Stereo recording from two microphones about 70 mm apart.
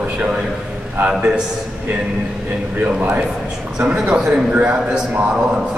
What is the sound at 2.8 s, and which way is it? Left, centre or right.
Speech, right.